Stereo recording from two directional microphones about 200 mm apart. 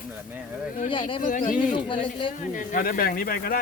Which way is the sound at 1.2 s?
40° left (ahead or behind).